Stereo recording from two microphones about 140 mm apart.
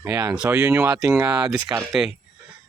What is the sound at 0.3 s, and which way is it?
Speech, 10° right (ahead or behind).